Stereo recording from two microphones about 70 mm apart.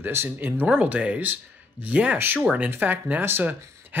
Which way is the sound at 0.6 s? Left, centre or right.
Centre.